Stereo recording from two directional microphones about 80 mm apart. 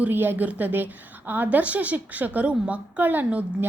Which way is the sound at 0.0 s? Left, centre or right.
Right.